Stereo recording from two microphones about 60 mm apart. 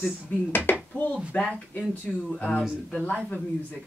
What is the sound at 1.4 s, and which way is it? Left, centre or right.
Speech, centre.